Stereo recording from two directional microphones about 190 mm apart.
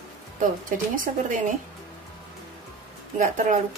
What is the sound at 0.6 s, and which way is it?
Speech, 45° right (ahead or behind).